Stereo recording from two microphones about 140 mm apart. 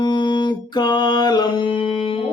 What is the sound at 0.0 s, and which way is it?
Music, 30° left (ahead or behind).